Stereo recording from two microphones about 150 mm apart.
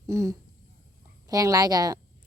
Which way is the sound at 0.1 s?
20° right (ahead or behind).